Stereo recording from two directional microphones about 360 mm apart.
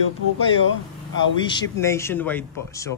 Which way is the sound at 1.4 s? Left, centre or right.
Centre.